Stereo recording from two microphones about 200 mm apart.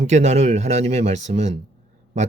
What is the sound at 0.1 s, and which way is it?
Speech, 35° right (ahead or behind).